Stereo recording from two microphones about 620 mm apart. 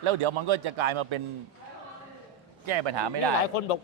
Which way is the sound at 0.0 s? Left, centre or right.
Right.